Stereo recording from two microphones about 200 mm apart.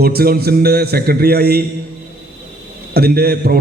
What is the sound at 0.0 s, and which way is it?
A man's voice, 50° right (ahead or behind).